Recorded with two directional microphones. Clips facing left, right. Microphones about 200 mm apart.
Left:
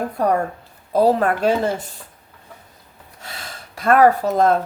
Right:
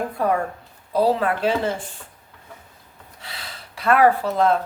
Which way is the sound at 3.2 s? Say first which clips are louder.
Left 3 dB; 45° left (ahead or behind).